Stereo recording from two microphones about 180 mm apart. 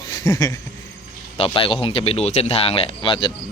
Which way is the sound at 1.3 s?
30° left (ahead or behind).